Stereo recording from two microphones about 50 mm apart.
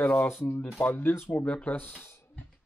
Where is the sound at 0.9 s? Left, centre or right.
Left.